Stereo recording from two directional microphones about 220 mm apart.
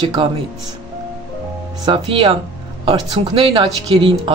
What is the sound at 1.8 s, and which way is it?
Speech, 20° right (ahead or behind).